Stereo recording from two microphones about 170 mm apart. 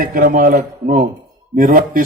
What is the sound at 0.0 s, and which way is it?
A man's voice, 55° right (ahead or behind).